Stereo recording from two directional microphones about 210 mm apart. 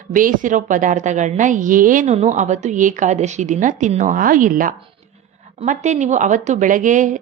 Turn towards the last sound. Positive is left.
turn(degrees=-35)  # may be behind; listen again after turning